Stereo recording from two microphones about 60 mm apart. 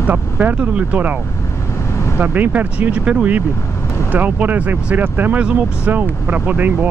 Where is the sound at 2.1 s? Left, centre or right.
Right.